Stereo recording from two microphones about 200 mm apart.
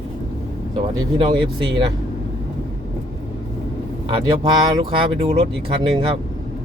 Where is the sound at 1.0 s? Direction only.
25° right (ahead or behind).